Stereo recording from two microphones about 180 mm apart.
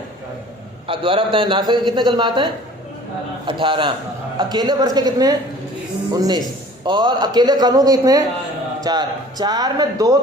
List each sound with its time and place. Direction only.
0.9 s a man's voice: 30° right (ahead or behind)
6.8 s a man's voice: 25° right (ahead or behind)